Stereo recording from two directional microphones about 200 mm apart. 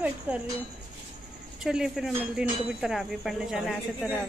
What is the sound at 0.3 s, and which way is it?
Speech, 5° right (ahead or behind).